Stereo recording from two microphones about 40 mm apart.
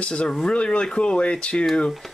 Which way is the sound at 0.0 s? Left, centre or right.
Left.